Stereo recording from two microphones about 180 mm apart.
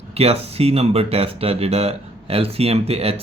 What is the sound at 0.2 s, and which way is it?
Speech, 35° right (ahead or behind).